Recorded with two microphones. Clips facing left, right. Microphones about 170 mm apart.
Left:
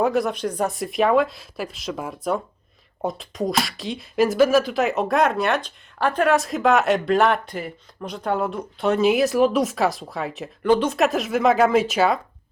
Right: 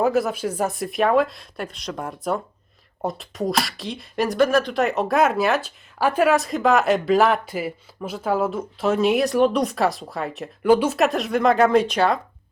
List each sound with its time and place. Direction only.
0.0 s speech: centre (ahead or behind)